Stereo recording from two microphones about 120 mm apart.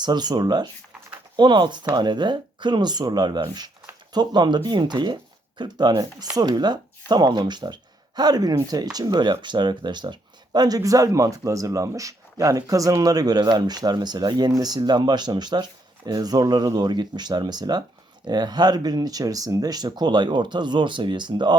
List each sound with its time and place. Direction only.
0.0 s speech: 35° right (ahead or behind)